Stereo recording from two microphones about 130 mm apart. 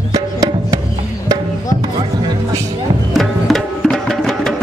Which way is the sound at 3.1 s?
Centre (ahead or behind).